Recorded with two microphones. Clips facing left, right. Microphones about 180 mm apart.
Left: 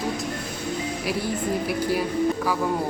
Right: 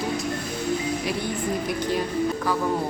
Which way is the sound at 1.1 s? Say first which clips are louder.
Left 1 dB; 5° left (ahead or behind).